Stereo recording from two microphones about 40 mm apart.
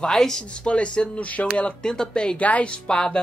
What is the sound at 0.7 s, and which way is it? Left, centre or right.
Speech, left.